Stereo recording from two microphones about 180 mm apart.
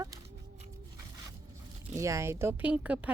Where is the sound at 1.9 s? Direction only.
15° right (ahead or behind).